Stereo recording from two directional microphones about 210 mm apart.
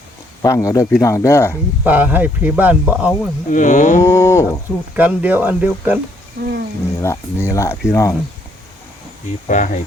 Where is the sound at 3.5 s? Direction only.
40° left (ahead or behind).